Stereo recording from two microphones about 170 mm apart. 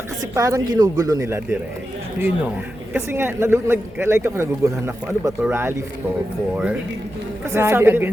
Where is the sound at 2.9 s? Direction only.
10° right (ahead or behind).